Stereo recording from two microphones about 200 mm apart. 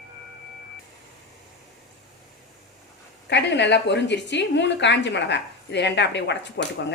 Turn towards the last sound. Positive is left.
turn(degrees=60)  # may be behind; listen again after turning